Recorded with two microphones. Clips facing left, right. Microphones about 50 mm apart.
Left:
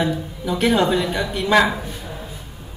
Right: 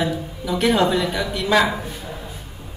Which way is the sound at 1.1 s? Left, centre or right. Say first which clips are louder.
Left 1 dB; left.